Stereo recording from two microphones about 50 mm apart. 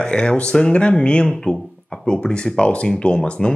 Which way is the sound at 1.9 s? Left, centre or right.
Centre.